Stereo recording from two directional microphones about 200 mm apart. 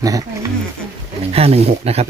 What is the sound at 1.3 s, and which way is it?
Speech, 30° right (ahead or behind).